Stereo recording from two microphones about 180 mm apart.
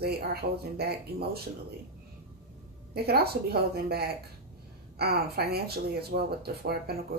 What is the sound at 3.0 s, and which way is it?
Speech, 60° right (ahead or behind).